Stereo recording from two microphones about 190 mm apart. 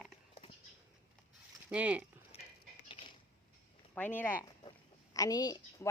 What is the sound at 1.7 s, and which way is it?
Speech, 10° right (ahead or behind).